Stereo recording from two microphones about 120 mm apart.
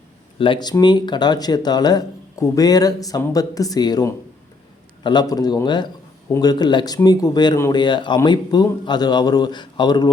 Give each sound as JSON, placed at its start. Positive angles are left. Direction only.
{"t": 0.3, "sound": "speech", "side_deg": 45}